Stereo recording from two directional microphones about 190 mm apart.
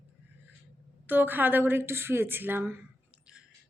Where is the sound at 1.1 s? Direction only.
10° right (ahead or behind).